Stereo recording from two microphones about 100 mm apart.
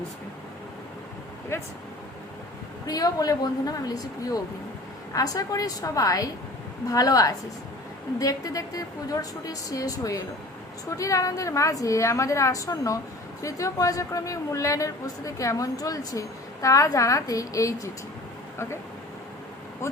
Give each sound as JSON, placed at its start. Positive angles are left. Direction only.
{"t": 2.8, "sound": "a woman's voice", "side_deg": 40}
{"t": 19.8, "sound": "speech", "side_deg": 30}